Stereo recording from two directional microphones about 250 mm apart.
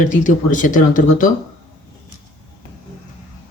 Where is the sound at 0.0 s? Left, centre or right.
Left.